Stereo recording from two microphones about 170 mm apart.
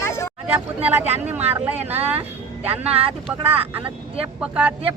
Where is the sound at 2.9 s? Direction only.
35° right (ahead or behind).